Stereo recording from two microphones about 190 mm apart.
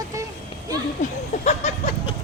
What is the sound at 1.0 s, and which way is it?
Speech, 40° left (ahead or behind).